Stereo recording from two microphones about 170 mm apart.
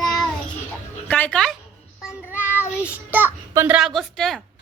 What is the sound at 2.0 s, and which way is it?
A child's voice, 10° right (ahead or behind).